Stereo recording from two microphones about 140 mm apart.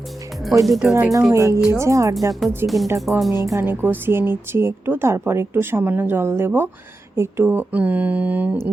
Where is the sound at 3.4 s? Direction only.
20° right (ahead or behind).